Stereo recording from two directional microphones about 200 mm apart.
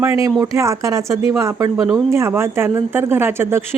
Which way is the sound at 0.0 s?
15° right (ahead or behind).